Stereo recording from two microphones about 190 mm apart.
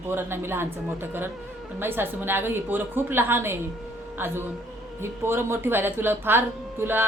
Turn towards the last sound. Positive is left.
turn(degrees=-10)  # may be behind; listen again after turning